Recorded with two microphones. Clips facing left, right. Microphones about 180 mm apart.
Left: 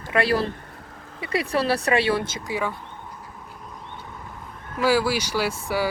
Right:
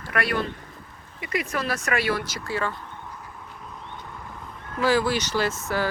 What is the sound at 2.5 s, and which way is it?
Speech, 10° left (ahead or behind).